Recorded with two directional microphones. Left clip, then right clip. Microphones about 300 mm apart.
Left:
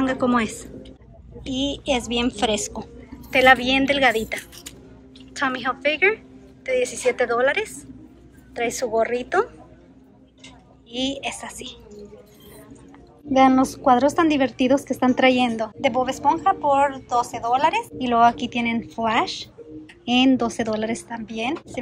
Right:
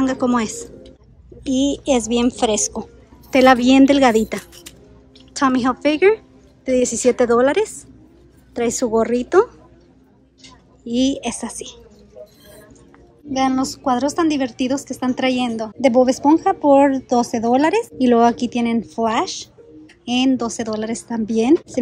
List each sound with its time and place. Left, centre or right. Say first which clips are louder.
0.0 s a woman's voice: right 2 dB; centre
10.9 s a woman's voice: right 6 dB; centre
13.3 s a woman's voice: left 3 dB; centre